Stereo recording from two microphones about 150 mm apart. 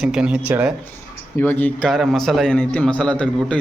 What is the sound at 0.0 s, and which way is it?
Speech, 5° right (ahead or behind).